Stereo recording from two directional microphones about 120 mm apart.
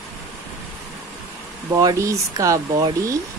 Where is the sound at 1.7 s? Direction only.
30° right (ahead or behind).